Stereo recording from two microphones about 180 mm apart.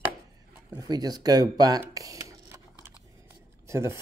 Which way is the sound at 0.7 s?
20° right (ahead or behind).